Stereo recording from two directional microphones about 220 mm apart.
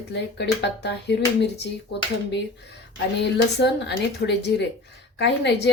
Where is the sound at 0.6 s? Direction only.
50° left (ahead or behind).